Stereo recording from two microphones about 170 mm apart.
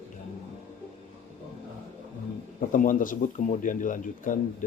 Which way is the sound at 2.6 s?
50° left (ahead or behind).